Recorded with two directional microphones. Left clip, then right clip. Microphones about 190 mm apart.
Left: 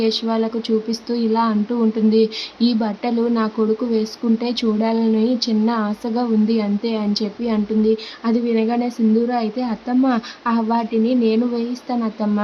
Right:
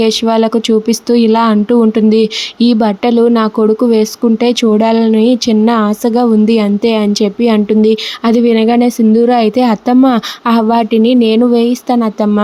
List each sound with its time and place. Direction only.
0.0 s speech: 40° right (ahead or behind)